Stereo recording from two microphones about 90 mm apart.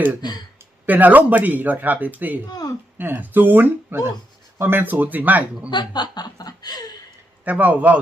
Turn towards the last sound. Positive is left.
turn(degrees=-15)  # may be behind; listen again after turning